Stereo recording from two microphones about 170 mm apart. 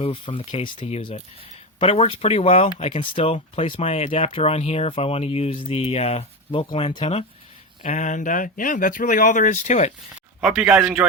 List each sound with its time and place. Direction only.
0.0 s speech: 30° left (ahead or behind)
7.9 s speech: 45° left (ahead or behind)
10.4 s speech: 5° right (ahead or behind)